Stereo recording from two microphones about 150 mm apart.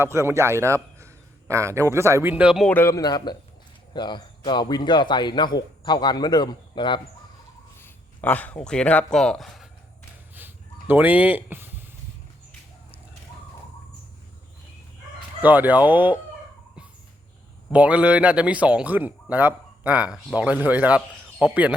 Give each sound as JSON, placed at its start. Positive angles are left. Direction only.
{"t": 0.0, "sound": "a man's voice", "side_deg": -15}
{"t": 2.3, "sound": "speech", "side_deg": -5}
{"t": 2.6, "sound": "a man's voice", "side_deg": 15}
{"t": 7.8, "sound": "speech", "side_deg": 15}
{"t": 10.3, "sound": "a sound", "side_deg": -10}
{"t": 15.4, "sound": "speech", "side_deg": -10}
{"t": 17.7, "sound": "speech", "side_deg": -10}